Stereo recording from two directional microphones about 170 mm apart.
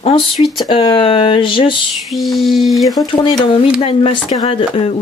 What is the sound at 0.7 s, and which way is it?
Speech, 30° left (ahead or behind).